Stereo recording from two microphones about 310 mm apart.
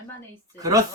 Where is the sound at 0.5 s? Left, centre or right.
Centre.